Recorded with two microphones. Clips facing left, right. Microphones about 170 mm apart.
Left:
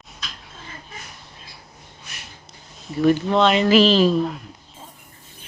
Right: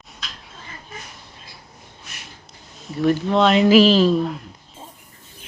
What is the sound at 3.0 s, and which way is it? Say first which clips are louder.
Speech: even; centre (ahead or behind).